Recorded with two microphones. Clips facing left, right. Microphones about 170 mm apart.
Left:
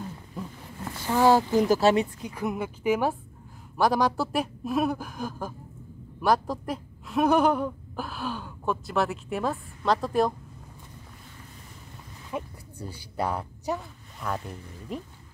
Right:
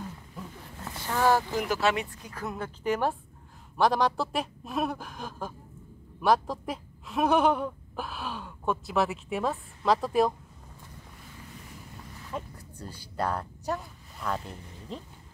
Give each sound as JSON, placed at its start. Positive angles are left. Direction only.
{"t": 0.8, "sound": "a sound", "side_deg": 15}
{"t": 1.6, "sound": "speech", "side_deg": 35}
{"t": 2.2, "sound": "a woman's voice", "side_deg": 15}
{"t": 12.3, "sound": "speech", "side_deg": 15}